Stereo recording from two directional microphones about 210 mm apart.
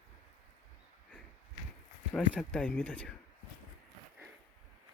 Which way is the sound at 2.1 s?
5° left (ahead or behind).